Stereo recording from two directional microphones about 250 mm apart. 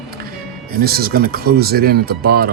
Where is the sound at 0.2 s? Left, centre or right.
Right.